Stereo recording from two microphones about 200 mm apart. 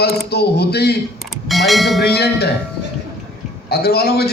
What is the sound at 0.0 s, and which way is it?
Speech, 55° left (ahead or behind).